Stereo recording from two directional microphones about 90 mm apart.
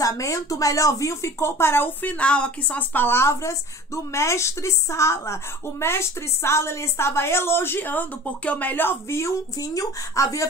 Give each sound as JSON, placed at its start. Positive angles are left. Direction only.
{"t": 0.0, "sound": "speech", "side_deg": 40}